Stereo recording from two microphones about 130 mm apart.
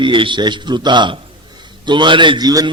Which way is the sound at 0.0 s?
40° right (ahead or behind).